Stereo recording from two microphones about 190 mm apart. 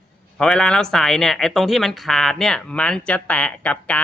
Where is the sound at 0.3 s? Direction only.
5° left (ahead or behind).